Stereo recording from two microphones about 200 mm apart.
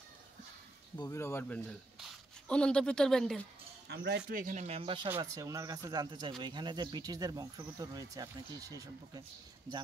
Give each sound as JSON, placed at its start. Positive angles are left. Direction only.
{"t": 0.9, "sound": "speech", "side_deg": 15}
{"t": 3.9, "sound": "speech", "side_deg": -55}
{"t": 5.1, "sound": "speech", "side_deg": -15}